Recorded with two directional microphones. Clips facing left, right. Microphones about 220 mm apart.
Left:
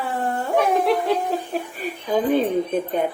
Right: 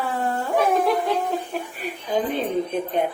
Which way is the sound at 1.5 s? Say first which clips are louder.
Left 2 dB; 45° left (ahead or behind).